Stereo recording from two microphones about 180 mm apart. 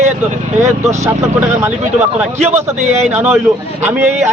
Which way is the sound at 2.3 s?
40° right (ahead or behind).